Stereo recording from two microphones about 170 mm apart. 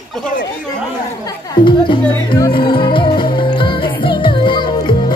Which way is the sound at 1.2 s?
25° left (ahead or behind).